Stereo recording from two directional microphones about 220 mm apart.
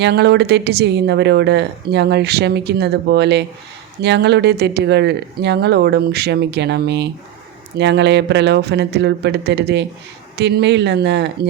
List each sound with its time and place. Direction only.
0.0 s speech: 50° right (ahead or behind)